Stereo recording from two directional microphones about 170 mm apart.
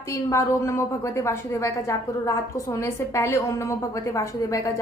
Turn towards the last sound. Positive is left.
turn(degrees=20)  # may be behind; listen again after turning